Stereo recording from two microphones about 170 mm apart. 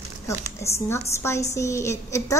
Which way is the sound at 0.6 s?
15° left (ahead or behind).